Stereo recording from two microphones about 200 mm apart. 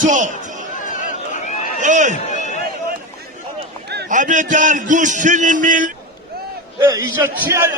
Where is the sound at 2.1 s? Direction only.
35° left (ahead or behind).